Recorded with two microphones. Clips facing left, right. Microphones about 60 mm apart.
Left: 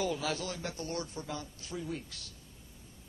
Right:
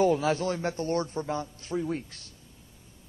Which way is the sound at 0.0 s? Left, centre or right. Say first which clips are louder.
Right 10 dB; right.